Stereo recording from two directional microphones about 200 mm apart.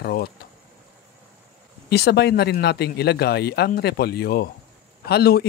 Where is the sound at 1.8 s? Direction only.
55° left (ahead or behind).